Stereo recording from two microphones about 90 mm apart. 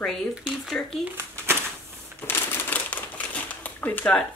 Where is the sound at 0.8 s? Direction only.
15° left (ahead or behind).